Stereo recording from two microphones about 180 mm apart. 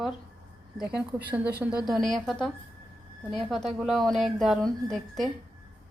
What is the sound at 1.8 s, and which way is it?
Speech, centre (ahead or behind).